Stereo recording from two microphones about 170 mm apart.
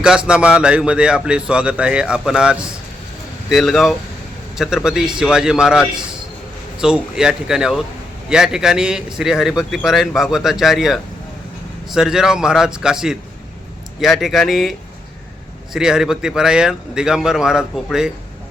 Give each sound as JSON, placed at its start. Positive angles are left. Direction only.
{"t": 0.3, "sound": "a man's voice", "side_deg": -5}